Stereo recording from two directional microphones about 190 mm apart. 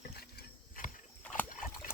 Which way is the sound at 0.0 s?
50° left (ahead or behind).